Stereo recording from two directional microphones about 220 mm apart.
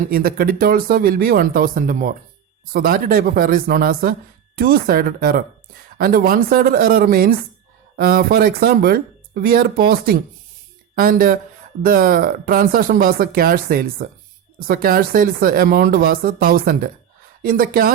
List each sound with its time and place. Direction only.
0.1 s speech: 40° right (ahead or behind)